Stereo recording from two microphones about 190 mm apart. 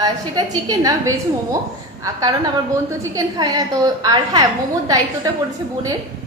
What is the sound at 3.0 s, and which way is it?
A woman's voice, 20° right (ahead or behind).